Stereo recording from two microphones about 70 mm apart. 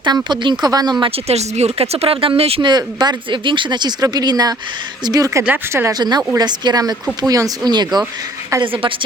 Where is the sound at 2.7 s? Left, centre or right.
Right.